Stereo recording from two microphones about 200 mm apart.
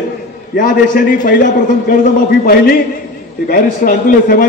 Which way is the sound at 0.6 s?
40° left (ahead or behind).